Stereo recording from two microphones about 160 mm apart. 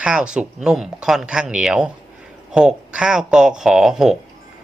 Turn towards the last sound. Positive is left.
turn(degrees=-5)  # may be behind; listen again after turning